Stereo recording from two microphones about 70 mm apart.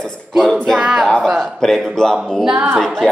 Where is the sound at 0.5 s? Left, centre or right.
Centre.